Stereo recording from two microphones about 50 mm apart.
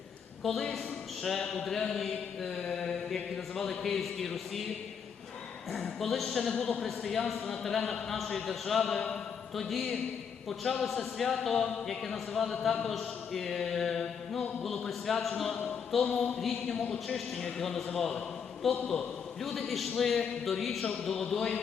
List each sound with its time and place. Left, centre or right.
0.4 s a man's voice: centre
5.7 s a man's voice: centre
6.8 s a man's voice: centre